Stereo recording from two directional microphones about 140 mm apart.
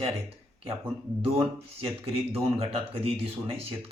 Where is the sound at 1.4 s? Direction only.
45° right (ahead or behind).